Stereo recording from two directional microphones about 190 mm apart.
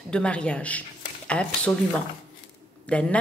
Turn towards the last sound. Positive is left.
turn(degrees=5)  # may be behind; listen again after turning